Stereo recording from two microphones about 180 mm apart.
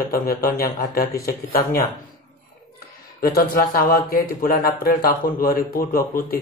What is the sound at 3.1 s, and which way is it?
Speech, 55° left (ahead or behind).